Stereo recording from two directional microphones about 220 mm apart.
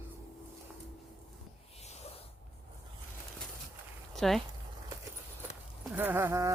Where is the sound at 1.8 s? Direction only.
30° left (ahead or behind).